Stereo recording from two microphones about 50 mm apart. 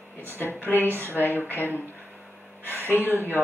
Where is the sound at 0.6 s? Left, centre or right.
Left.